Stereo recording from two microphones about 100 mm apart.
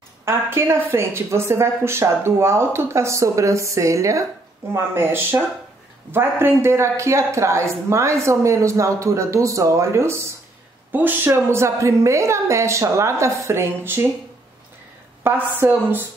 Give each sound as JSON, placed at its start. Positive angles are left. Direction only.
{"t": 0.2, "sound": "speech", "side_deg": -25}
{"t": 15.2, "sound": "speech", "side_deg": -20}